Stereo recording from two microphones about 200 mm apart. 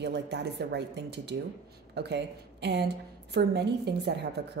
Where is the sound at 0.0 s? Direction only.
55° right (ahead or behind).